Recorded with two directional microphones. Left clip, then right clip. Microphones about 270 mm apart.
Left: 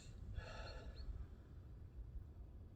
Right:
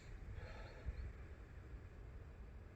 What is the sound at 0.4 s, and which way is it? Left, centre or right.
Wild animals, centre.